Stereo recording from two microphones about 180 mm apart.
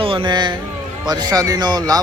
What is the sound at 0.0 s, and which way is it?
Speech, 30° right (ahead or behind).